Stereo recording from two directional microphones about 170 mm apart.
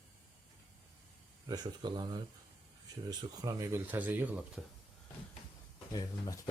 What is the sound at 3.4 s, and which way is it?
Speech, 20° right (ahead or behind).